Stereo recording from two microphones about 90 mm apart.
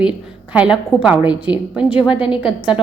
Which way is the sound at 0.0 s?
10° right (ahead or behind).